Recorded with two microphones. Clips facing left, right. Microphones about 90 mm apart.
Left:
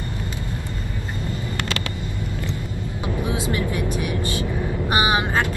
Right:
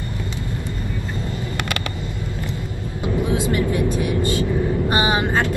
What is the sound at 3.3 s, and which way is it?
Vehicle, 20° left (ahead or behind).